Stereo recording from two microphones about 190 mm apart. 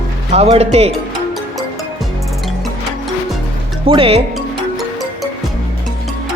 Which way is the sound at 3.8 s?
30° right (ahead or behind).